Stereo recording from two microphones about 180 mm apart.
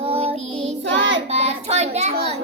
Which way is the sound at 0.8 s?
85° right.